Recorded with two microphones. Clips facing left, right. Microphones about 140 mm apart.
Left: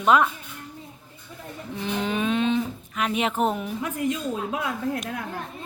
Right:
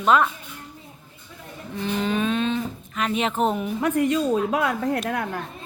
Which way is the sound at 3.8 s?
70° right (ahead or behind).